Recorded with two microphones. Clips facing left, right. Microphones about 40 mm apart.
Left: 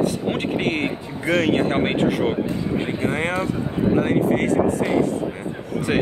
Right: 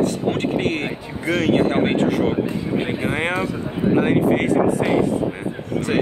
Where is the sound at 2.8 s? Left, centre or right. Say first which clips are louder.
Right 1 dB; centre.